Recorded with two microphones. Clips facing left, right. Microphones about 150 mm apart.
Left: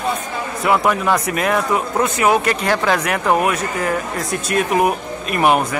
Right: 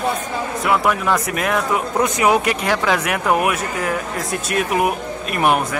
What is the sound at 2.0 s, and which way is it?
Speech, 15° right (ahead or behind).